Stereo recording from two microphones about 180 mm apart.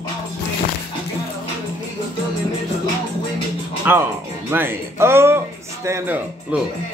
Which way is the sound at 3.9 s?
10° right (ahead or behind).